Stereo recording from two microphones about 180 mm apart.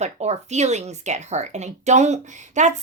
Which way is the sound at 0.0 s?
40° right (ahead or behind).